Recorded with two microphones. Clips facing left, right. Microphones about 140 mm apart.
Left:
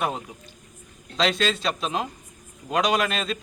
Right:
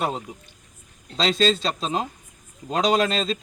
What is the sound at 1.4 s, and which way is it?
Speech, 30° right (ahead or behind).